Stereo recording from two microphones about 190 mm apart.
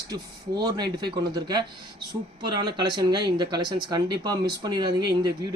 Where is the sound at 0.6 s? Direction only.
20° right (ahead or behind).